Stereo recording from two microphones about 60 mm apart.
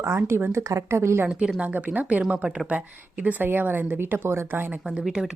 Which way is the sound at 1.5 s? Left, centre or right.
Right.